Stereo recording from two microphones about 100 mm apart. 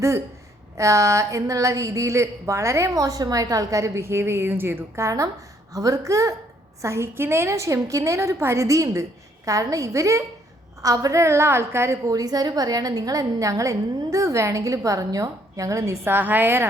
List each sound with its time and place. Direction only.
0.8 s a woman's voice: 30° right (ahead or behind)
12.0 s a woman's voice: 40° right (ahead or behind)
16.1 s a woman's voice: 20° right (ahead or behind)